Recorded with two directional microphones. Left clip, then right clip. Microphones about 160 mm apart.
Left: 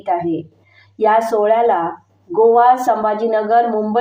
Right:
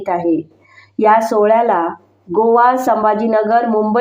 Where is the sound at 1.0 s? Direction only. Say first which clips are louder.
Right 2 dB; 25° right (ahead or behind).